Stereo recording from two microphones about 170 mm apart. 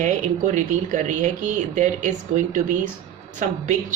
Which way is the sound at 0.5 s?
45° right (ahead or behind).